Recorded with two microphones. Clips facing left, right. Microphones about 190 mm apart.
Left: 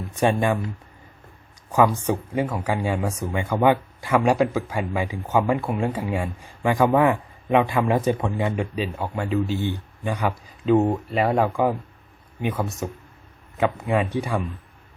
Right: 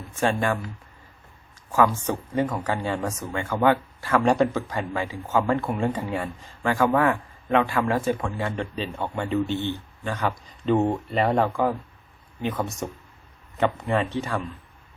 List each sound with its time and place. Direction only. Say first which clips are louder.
0.0 s speech: left 3 dB; 15° left (ahead or behind)
1.7 s speech: left 2 dB; 15° left (ahead or behind)